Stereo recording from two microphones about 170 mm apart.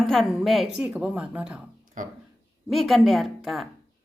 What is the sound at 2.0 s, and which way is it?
Speech, 50° right (ahead or behind).